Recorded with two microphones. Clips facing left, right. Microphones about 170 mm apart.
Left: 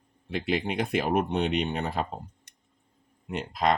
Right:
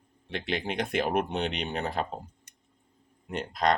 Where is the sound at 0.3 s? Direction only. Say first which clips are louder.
Left 3 dB; 5° left (ahead or behind).